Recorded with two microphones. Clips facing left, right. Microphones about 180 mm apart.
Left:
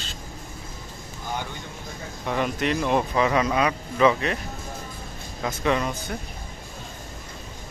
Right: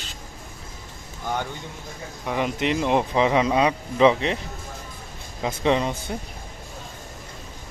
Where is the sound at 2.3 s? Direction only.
15° right (ahead or behind).